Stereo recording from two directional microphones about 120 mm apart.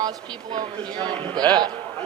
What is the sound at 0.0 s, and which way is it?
Speech, 35° right (ahead or behind).